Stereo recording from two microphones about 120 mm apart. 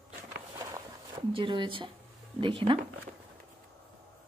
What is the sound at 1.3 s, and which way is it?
Speech, 40° right (ahead or behind).